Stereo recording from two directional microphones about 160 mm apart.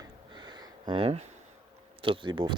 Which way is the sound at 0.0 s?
25° right (ahead or behind).